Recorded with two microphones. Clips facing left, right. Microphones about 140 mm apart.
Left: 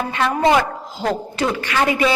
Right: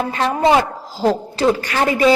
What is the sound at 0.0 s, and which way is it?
A woman's voice, 35° right (ahead or behind).